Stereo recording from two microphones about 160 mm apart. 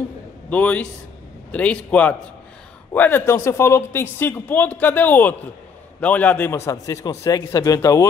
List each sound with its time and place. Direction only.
0.5 s a man's voice: 10° left (ahead or behind)